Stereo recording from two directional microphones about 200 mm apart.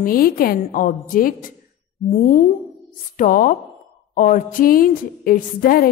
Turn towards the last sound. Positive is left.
turn(degrees=45)  # may be behind; listen again after turning